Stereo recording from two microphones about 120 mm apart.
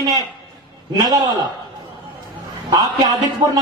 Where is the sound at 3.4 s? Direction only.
30° right (ahead or behind).